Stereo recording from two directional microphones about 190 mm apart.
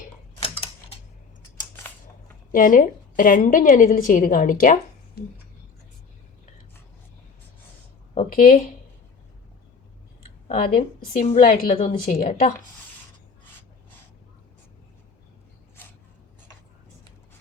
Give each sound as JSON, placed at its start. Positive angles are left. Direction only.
{"t": 0.3, "sound": "a sound", "side_deg": 30}
{"t": 2.5, "sound": "a woman's voice", "side_deg": 45}
{"t": 8.3, "sound": "a woman's voice", "side_deg": 45}
{"t": 10.8, "sound": "a woman's voice", "side_deg": 45}